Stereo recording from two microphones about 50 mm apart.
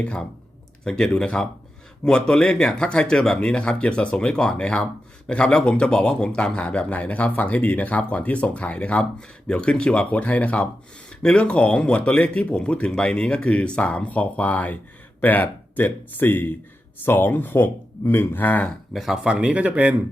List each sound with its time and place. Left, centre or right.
0.0 s speech: left
18.9 s speech: centre
19.3 s speech: right